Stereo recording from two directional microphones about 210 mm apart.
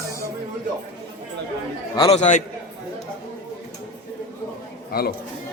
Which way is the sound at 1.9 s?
25° left (ahead or behind).